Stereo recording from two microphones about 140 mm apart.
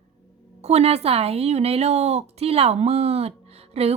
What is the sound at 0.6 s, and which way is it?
A woman's voice, 50° right (ahead or behind).